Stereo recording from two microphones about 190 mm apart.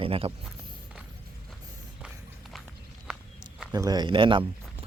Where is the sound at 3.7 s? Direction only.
20° right (ahead or behind).